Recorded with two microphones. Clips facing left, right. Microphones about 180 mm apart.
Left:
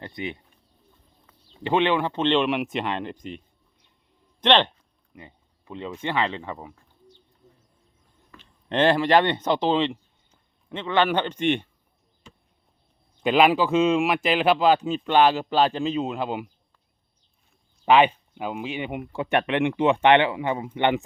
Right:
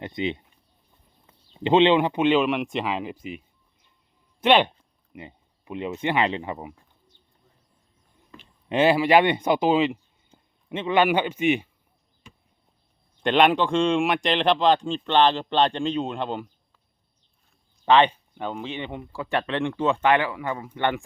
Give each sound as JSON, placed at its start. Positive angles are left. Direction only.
{"t": 0.0, "sound": "speech", "side_deg": -20}
{"t": 8.3, "sound": "speech", "side_deg": -10}
{"t": 10.3, "sound": "a sound", "side_deg": -25}
{"t": 10.7, "sound": "a man's voice", "side_deg": -15}
{"t": 13.2, "sound": "speech", "side_deg": 5}
{"t": 17.8, "sound": "speech", "side_deg": 10}